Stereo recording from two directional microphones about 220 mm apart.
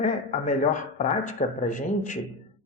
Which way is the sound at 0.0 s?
35° left (ahead or behind).